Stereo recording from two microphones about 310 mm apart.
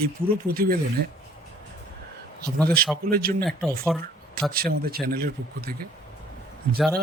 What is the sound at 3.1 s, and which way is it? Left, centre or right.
Speech, right.